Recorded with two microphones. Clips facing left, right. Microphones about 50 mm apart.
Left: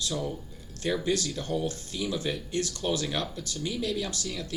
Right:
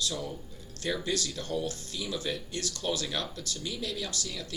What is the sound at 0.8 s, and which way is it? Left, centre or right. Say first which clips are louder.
Speech: left 3 dB; centre.